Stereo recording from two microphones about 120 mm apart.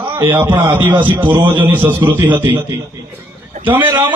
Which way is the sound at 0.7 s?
15° right (ahead or behind).